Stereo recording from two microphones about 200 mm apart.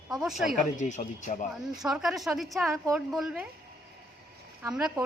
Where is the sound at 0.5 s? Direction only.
35° left (ahead or behind).